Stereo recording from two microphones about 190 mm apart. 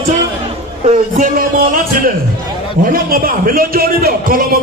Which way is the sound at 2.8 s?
50° right (ahead or behind).